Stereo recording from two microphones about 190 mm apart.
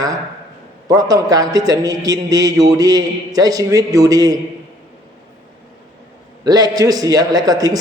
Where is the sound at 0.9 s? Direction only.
20° right (ahead or behind).